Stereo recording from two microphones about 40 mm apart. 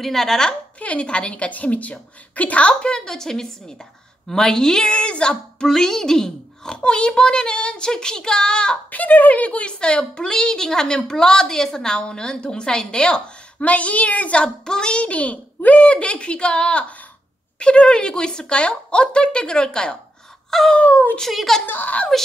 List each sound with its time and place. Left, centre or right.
0.0 s speech: centre
0.7 s a woman's voice: left
3.1 s a child's voice: centre
8.9 s a child's voice: left
14.4 s a child's voice: centre
20.4 s a sound: centre
20.8 s speech: left